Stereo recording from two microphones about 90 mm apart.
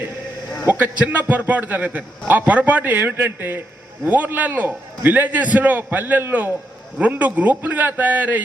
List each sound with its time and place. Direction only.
0.7 s a man's voice: 20° right (ahead or behind)